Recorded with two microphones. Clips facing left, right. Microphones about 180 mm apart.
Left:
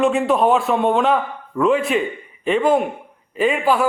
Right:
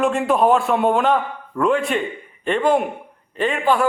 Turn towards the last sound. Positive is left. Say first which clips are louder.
# left 1 dB
turn(degrees=5)  # may be behind; listen again after turning